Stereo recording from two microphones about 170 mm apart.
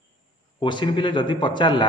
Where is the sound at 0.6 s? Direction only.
30° left (ahead or behind).